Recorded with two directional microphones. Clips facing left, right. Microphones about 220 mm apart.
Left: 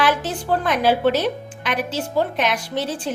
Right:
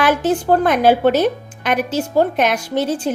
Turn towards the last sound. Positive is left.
turn(degrees=-45)  # may be behind; listen again after turning